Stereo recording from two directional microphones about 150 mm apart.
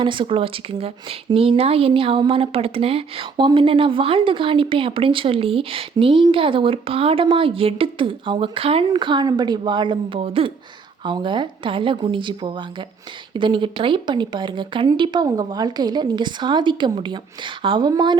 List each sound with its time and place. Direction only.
0.0 s speech: 35° right (ahead or behind)